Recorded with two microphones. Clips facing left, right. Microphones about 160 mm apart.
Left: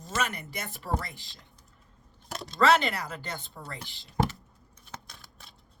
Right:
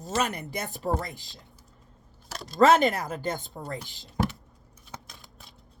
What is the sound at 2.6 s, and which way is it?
Speech, 45° right (ahead or behind).